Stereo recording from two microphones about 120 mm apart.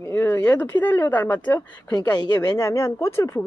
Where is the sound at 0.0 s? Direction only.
20° left (ahead or behind).